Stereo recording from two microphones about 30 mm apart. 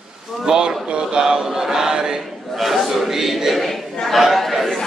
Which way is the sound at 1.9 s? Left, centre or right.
Right.